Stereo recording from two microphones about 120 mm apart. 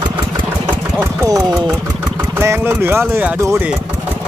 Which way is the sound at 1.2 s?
30° right (ahead or behind).